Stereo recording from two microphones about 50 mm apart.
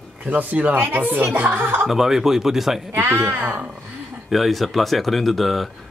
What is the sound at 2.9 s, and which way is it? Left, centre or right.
Speech, right.